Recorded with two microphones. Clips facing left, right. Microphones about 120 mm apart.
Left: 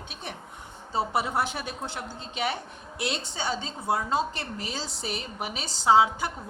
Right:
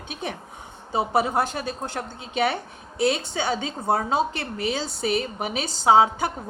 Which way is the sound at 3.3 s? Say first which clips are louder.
Right 5 dB; 60° right (ahead or behind).